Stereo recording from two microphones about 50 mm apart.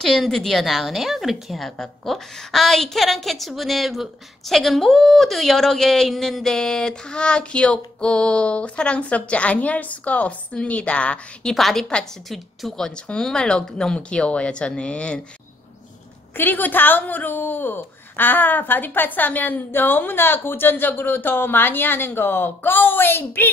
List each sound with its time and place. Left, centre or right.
0.0 s a woman's voice: centre; by 11.5 s left
11.5 s a woman's voice: centre
16.3 s a woman's voice: left